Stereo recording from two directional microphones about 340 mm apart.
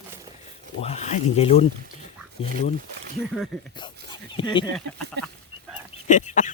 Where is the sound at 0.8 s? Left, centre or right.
Centre.